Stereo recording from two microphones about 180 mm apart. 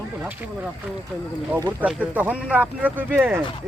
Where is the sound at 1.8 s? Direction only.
10° right (ahead or behind).